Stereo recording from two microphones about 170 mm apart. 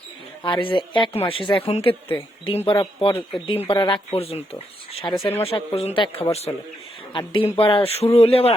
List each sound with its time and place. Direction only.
0.4 s a man's voice: 30° left (ahead or behind)
1.9 s speech: 10° left (ahead or behind)
2.4 s a man's voice: 30° left (ahead or behind)